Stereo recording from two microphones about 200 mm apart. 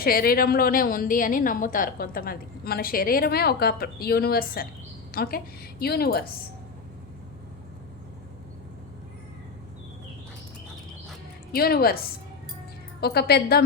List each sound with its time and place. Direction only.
0.0 s a woman's voice: 45° left (ahead or behind)
11.5 s a woman's voice: 50° left (ahead or behind)